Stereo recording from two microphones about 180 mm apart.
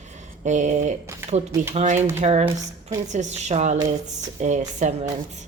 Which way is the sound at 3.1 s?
40° right (ahead or behind).